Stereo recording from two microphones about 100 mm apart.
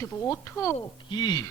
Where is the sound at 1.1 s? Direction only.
40° left (ahead or behind).